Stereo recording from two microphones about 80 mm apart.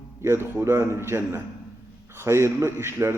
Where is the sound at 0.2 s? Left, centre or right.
Right.